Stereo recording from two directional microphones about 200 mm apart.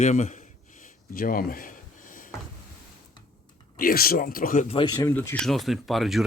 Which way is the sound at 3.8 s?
45° left (ahead or behind).